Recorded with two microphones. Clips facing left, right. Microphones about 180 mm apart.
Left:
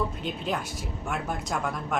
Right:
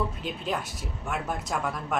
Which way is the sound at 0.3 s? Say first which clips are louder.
Left 1 dB; centre (ahead or behind).